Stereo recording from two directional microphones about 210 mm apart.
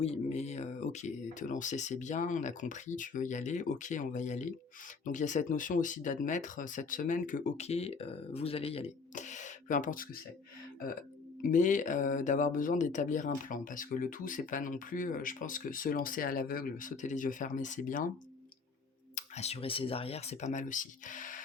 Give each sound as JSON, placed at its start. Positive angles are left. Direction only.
{"t": 0.0, "sound": "speech", "side_deg": 30}
{"t": 11.4, "sound": "speech", "side_deg": 35}
{"t": 19.1, "sound": "speech", "side_deg": 30}